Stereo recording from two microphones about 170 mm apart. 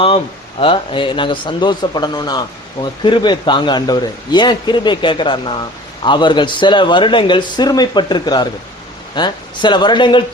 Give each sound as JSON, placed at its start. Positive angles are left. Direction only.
{"t": 0.6, "sound": "a man's voice", "side_deg": 30}